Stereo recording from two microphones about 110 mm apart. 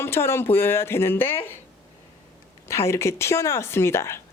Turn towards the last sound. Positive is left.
turn(degrees=25)  # may be behind; listen again after turning